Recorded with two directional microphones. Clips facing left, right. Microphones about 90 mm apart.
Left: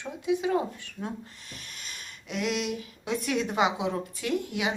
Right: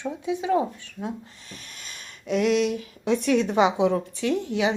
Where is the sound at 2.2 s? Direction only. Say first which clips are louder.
Right 8 dB; 40° right (ahead or behind).